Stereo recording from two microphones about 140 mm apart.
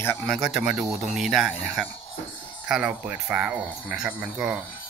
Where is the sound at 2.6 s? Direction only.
5° right (ahead or behind).